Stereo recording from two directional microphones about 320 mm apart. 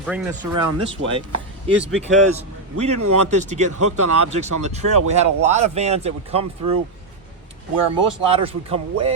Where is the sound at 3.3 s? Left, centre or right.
Right.